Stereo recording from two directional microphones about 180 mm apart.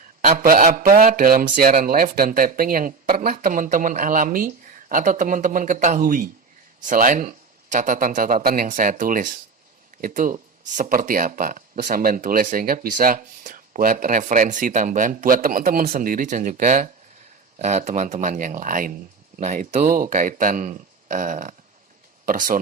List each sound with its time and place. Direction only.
0.3 s speech: 50° right (ahead or behind)